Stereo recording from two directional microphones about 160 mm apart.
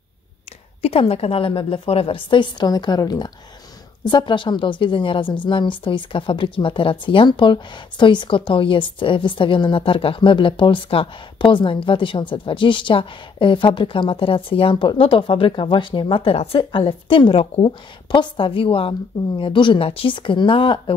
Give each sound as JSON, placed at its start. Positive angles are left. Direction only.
{"t": 0.8, "sound": "a woman's voice", "side_deg": 35}